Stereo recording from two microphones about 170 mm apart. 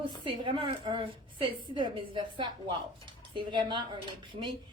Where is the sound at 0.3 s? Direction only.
30° right (ahead or behind).